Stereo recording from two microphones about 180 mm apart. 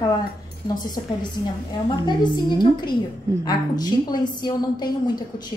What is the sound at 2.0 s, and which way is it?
A woman's voice, 25° left (ahead or behind).